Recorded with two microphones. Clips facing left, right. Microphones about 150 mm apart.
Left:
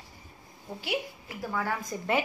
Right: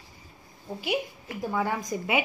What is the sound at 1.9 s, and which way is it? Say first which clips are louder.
Speech: right 5 dB; 15° right (ahead or behind).